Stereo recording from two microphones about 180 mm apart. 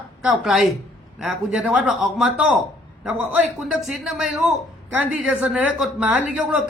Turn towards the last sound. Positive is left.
turn(degrees=-5)  # may be behind; listen again after turning